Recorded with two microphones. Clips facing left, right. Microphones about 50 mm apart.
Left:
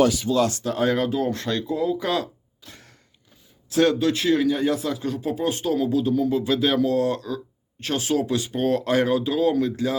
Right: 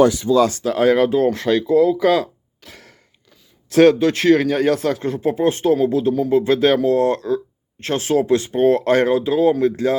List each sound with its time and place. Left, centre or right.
0.6 s speech: right
1.0 s speech: right
2.6 s a sound: right
3.7 s speech: right
5.0 s speech: right
6.7 s speech: right
8.5 s speech: right
8.8 s speech: right
9.1 s speech: right